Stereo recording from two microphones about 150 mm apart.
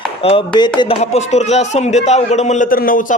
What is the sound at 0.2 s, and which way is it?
Speech, 40° left (ahead or behind).